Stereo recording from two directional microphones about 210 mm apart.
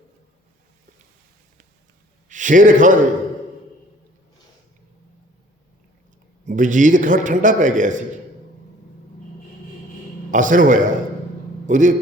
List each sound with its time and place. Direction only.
2.3 s a man's voice: 40° right (ahead or behind)
6.5 s a man's voice: 35° right (ahead or behind)
10.3 s a man's voice: 40° right (ahead or behind)